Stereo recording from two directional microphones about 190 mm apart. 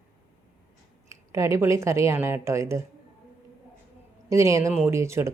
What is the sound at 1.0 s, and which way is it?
Speech, 15° right (ahead or behind).